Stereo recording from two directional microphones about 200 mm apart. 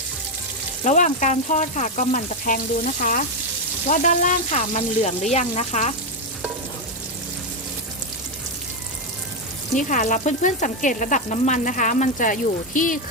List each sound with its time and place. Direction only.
0.9 s frying: 40° left (ahead or behind)
9.7 s frying: 40° left (ahead or behind)